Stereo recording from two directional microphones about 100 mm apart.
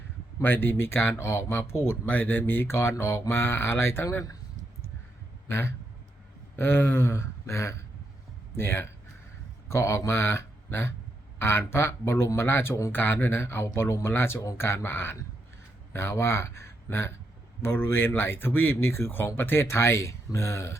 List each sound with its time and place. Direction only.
0.4 s speech: 20° left (ahead or behind)
5.5 s a man's voice: 25° left (ahead or behind)